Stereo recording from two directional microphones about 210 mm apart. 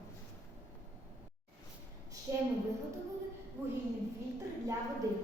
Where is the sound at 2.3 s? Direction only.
15° right (ahead or behind).